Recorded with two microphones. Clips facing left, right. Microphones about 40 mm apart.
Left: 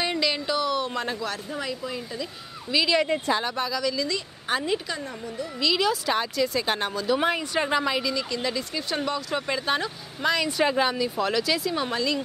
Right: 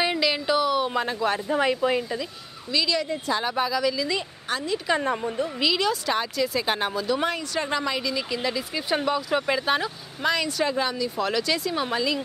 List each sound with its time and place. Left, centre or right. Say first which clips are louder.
0.0 s a sound: right 2 dB; centre
1.2 s speech: right 8 dB; right
1.7 s speech: right 9 dB; right
2.7 s speech: left 2 dB; centre
3.3 s speech: right 2 dB; centre
4.5 s speech: left 3 dB; left
4.9 s speech: right 8 dB; right
5.7 s speech: left 3 dB; centre
7.1 s speech: left 2 dB; centre
8.1 s speech: right 1 dB; centre
10.6 s speech: left 2 dB; centre
11.1 s speech: even; centre